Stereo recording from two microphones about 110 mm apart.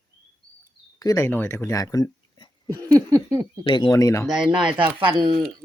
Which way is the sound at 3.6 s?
45° left (ahead or behind).